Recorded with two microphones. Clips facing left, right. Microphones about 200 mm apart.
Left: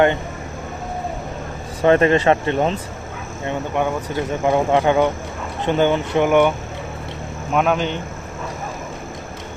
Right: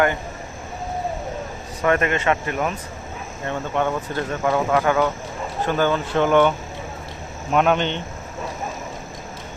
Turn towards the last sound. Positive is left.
turn(degrees=5)  # may be behind; listen again after turning